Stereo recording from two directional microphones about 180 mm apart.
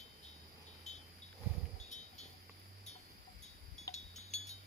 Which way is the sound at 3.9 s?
40° left (ahead or behind).